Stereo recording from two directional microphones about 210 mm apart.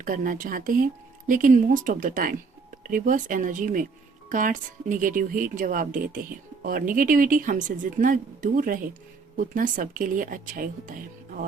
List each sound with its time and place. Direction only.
0.0 s a woman's voice: 40° right (ahead or behind)